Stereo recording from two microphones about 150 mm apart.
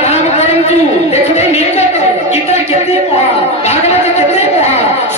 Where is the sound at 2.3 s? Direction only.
45° left (ahead or behind).